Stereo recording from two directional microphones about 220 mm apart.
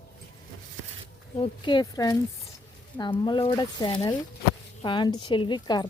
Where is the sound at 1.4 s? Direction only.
20° left (ahead or behind).